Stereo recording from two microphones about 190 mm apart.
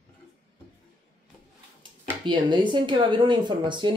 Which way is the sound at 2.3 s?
25° right (ahead or behind).